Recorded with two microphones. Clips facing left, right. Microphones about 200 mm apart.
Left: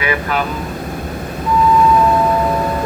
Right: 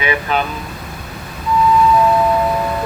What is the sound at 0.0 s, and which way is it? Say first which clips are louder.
Speech: even; 20° right (ahead or behind).